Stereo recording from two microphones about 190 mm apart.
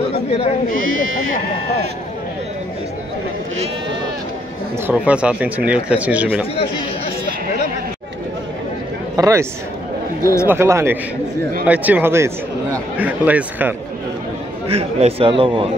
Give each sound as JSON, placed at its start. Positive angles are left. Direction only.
{"t": 0.3, "sound": "speech", "side_deg": 35}
{"t": 0.7, "sound": "speech", "side_deg": -90}
{"t": 4.8, "sound": "speech", "side_deg": -5}
{"t": 9.1, "sound": "a man's voice", "side_deg": -15}
{"t": 10.5, "sound": "speech", "side_deg": -15}
{"t": 14.7, "sound": "a man's voice", "side_deg": -30}